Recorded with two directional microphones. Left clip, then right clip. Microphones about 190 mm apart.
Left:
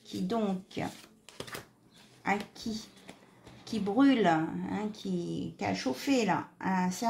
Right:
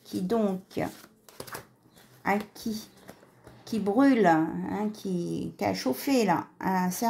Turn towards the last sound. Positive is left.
turn(degrees=-45)  # may be behind; listen again after turning